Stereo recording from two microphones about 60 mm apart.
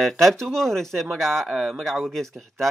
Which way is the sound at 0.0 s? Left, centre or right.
Centre.